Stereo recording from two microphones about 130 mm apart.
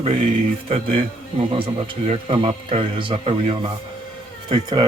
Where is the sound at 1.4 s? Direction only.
45° right (ahead or behind).